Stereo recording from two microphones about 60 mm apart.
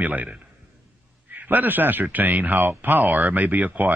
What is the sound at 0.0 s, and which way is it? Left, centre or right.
Speech, right.